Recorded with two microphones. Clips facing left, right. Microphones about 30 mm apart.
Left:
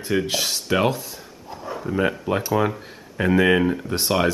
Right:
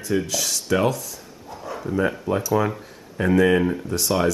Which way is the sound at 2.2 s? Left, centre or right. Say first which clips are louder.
Even; left.